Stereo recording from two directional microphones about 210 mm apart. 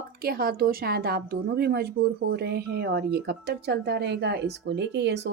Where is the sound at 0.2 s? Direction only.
45° right (ahead or behind).